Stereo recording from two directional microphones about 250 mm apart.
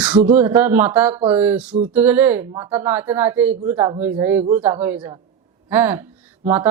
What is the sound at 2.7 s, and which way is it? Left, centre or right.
Speech, centre.